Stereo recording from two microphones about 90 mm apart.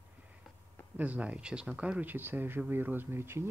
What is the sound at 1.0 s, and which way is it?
Speech, 15° right (ahead or behind).